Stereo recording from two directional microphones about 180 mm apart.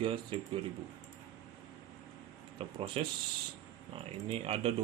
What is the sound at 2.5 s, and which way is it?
Speech, 30° right (ahead or behind).